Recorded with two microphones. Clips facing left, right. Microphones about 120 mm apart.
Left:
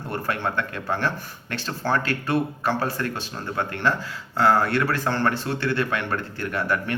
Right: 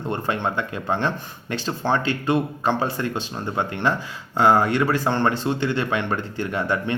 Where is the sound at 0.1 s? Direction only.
20° right (ahead or behind).